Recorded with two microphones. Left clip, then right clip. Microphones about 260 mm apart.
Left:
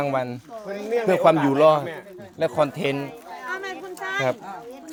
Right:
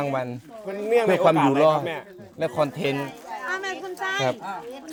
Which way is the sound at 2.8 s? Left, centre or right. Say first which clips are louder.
Left 1 dB; centre.